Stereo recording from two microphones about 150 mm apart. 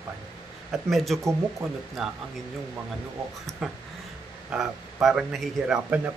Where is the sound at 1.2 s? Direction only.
20° right (ahead or behind).